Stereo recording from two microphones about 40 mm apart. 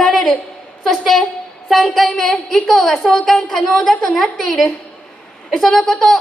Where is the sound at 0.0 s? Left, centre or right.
Centre.